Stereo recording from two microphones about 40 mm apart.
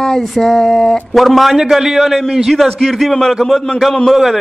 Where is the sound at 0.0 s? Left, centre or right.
Centre.